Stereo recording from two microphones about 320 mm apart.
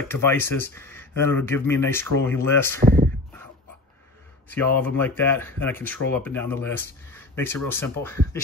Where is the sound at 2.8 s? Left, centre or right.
Right.